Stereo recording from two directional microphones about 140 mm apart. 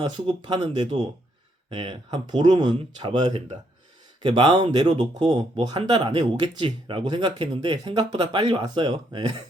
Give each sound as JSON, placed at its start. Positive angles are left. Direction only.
{"t": 0.1, "sound": "speech", "side_deg": -30}